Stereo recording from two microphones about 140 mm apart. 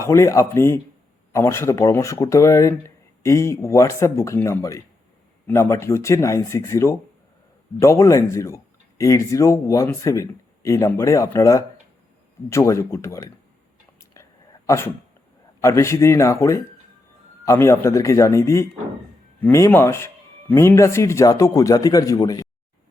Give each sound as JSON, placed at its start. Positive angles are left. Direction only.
{"t": 0.0, "sound": "speech", "side_deg": 20}
{"t": 14.0, "sound": "whispering", "side_deg": 20}
{"t": 15.6, "sound": "speech", "side_deg": 20}